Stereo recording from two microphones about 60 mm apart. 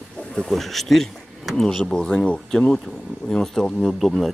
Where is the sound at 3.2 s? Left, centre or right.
Centre.